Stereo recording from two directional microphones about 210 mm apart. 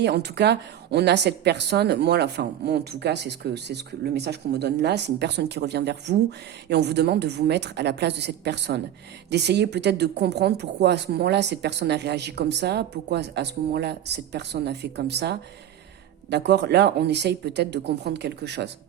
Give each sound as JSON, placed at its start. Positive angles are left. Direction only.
{"t": 0.0, "sound": "a woman's voice", "side_deg": -55}